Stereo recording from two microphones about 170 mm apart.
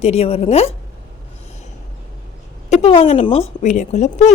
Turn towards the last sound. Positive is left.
turn(degrees=40)  # may be behind; listen again after turning